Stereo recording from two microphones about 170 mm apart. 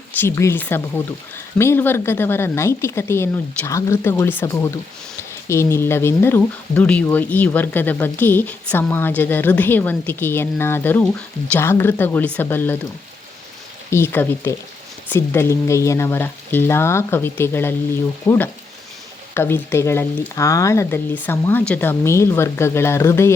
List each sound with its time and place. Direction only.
0.2 s a woman's voice: 15° left (ahead or behind)
13.9 s a woman's voice: 15° left (ahead or behind)